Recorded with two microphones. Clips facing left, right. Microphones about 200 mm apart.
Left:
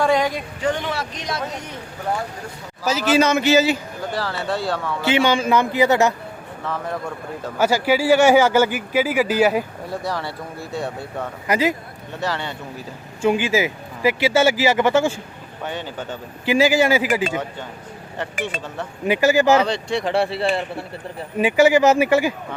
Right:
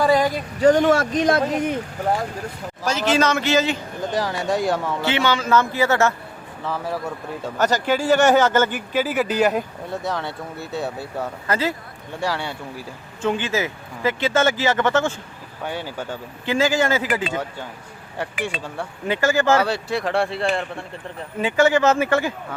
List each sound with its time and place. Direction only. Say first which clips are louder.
0.0 s a sound: right 1 dB; centre (ahead or behind)
0.6 s speech: right 9 dB; 45° right (ahead or behind)
3.1 s speech: left 3 dB; 10° left (ahead or behind)
4.1 s speech: right 2 dB; 15° right (ahead or behind)
5.0 s speech: left 4 dB; 15° left (ahead or behind)
6.7 s speech: even; 5° right (ahead or behind)
7.6 s speech: left 2 dB; 10° left (ahead or behind)
11.4 s speech: left 4 dB; 15° left (ahead or behind)
12.2 s speech: even; 10° right (ahead or behind)
13.2 s speech: left 4 dB; 10° left (ahead or behind)
15.6 s speech: even; 10° right (ahead or behind)
16.5 s speech: left 3 dB; 15° left (ahead or behind)
19.0 s speech: left 3 dB; 15° left (ahead or behind)
19.6 s speech: left 1 dB; 5° right (ahead or behind); by 22.3 s 10° left (ahead or behind)